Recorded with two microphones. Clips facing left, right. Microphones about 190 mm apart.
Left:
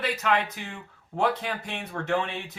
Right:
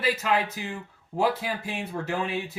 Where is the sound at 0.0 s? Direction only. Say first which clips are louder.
Right 1 dB; 5° right (ahead or behind).